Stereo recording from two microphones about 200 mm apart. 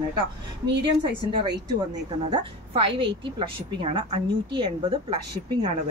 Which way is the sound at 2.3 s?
25° right (ahead or behind).